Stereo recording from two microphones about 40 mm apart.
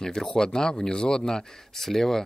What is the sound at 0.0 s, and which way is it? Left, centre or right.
Speech, centre.